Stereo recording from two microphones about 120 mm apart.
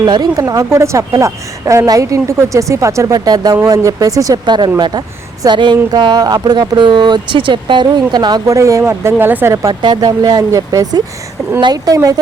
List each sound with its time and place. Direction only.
0.0 s speech: 35° right (ahead or behind)
9.8 s speech: 35° right (ahead or behind)